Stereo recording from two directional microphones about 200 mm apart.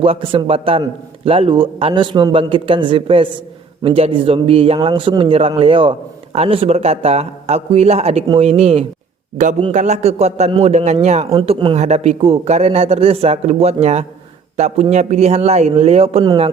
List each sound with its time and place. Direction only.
0.0 s a man's voice: 25° right (ahead or behind)